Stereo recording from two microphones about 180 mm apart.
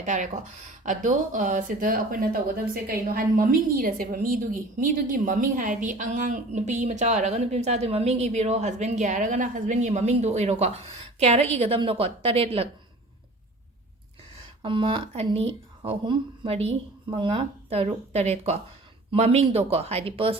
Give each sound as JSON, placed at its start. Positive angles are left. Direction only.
{"t": 0.0, "sound": "a woman's voice", "side_deg": -45}
{"t": 14.6, "sound": "a woman's voice", "side_deg": -30}